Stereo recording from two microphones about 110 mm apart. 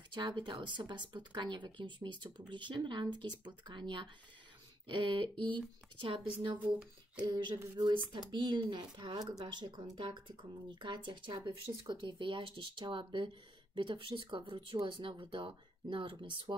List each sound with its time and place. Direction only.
0.1 s speech: 45° right (ahead or behind)